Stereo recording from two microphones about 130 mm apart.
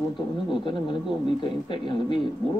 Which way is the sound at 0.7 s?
40° left (ahead or behind).